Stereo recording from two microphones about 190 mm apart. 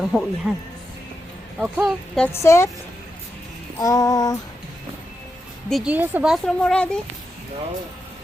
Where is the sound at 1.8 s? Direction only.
5° left (ahead or behind).